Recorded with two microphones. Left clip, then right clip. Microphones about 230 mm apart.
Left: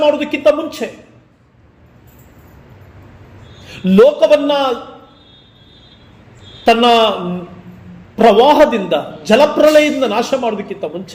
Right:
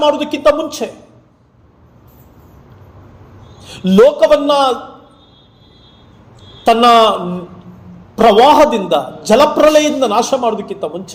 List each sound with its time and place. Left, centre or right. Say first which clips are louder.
0.0 s a man's voice: even; right
3.6 s a sound: even; right
4.0 s a man's voice: right 1 dB; right
6.7 s a man's voice: right 2 dB; right